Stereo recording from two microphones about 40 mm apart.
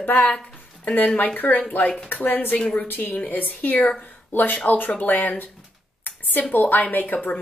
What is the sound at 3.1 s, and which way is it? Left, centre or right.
Speech, left.